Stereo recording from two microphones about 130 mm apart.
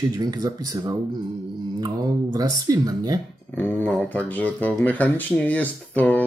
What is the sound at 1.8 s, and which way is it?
Speech, 30° right (ahead or behind).